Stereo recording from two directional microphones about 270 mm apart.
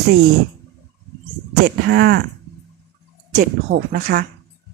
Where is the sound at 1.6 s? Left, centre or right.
Right.